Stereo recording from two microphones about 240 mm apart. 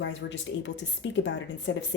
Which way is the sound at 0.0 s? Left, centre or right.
Left.